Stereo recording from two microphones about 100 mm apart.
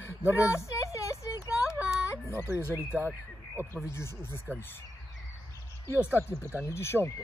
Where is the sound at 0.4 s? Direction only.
30° left (ahead or behind).